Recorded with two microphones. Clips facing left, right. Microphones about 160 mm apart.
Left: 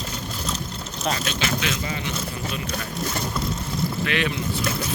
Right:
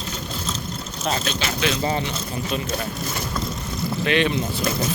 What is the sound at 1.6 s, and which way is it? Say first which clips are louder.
Speech: right 6 dB; 35° right (ahead or behind).